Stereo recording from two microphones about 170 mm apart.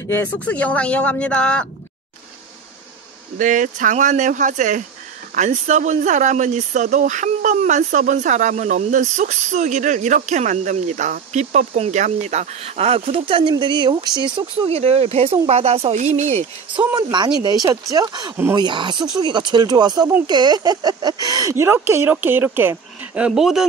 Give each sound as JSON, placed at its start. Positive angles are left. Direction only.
{"t": 0.1, "sound": "speech", "side_deg": 10}
{"t": 3.3, "sound": "speech", "side_deg": -50}
{"t": 16.9, "sound": "speech", "side_deg": -25}
{"t": 18.3, "sound": "speech", "side_deg": -15}
{"t": 18.6, "sound": "speech", "side_deg": -30}